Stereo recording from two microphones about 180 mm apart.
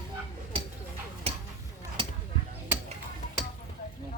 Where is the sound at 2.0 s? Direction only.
30° right (ahead or behind).